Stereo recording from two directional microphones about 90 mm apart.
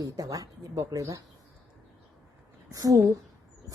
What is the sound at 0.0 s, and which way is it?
Speech, 40° right (ahead or behind).